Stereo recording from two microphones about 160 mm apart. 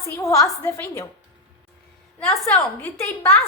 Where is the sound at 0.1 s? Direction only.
20° left (ahead or behind).